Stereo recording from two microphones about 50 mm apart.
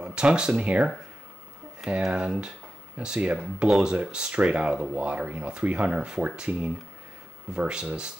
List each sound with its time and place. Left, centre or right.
0.0 s speech: centre
2.0 s speech: centre